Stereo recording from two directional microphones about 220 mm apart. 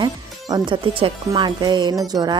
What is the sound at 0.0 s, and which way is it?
Speech, 20° right (ahead or behind).